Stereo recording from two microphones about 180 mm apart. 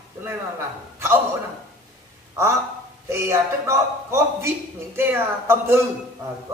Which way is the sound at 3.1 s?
15° right (ahead or behind).